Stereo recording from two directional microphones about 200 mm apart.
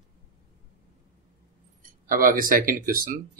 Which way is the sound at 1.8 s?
45° right (ahead or behind).